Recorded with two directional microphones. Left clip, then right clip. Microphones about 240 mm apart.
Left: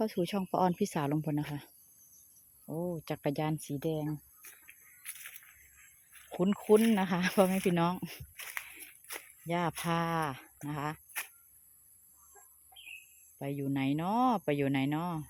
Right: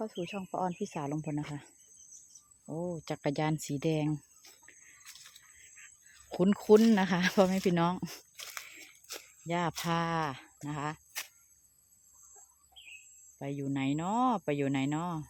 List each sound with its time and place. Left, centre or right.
0.0 s speech: left; by 4.1 s centre
6.3 s speech: centre
9.0 s speech: centre
13.4 s speech: centre